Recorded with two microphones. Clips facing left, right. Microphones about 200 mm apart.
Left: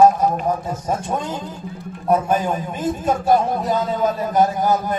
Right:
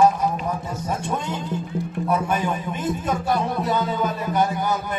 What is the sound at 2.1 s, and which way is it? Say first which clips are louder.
A man's voice: left 6 dB; 40° left (ahead or behind).